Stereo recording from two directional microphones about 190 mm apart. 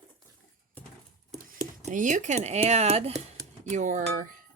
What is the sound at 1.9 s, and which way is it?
Speech, 40° right (ahead or behind).